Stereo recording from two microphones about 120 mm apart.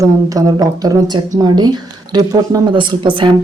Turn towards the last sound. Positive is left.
turn(degrees=-45)  # may be behind; listen again after turning